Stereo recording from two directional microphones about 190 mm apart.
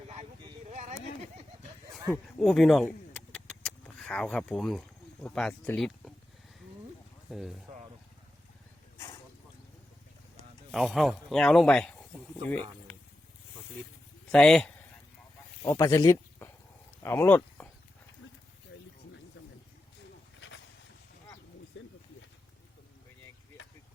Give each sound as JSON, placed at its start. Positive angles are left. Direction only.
{"t": 0.7, "sound": "a sound", "side_deg": -35}
{"t": 2.4, "sound": "speech", "side_deg": 0}
{"t": 3.3, "sound": "vehicle", "side_deg": 5}
{"t": 5.2, "sound": "speech", "side_deg": 5}
{"t": 7.3, "sound": "speech", "side_deg": 0}
{"t": 10.7, "sound": "speech", "side_deg": 0}
{"t": 14.3, "sound": "a man's voice", "side_deg": 5}
{"t": 15.6, "sound": "speech", "side_deg": 15}
{"t": 21.7, "sound": "a sound", "side_deg": 75}